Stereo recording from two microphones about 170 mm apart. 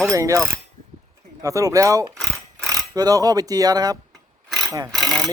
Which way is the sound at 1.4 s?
20° right (ahead or behind).